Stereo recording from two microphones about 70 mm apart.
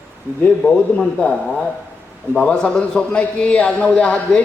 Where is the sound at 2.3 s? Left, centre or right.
Centre.